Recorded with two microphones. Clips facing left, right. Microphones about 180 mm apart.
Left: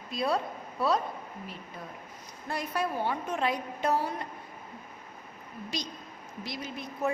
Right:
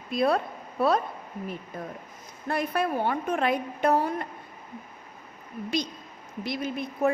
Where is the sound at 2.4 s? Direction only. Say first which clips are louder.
Right 5 dB; 60° right (ahead or behind).